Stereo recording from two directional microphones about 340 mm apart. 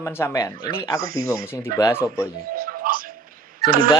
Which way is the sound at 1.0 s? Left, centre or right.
Right.